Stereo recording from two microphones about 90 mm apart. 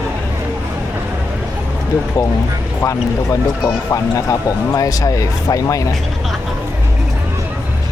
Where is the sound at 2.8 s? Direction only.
35° left (ahead or behind).